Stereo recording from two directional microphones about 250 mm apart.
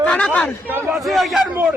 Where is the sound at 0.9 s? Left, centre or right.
Centre.